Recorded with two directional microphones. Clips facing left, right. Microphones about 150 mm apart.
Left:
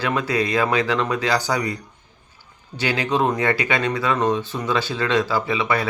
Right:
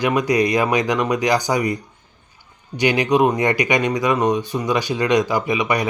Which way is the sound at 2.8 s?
15° right (ahead or behind).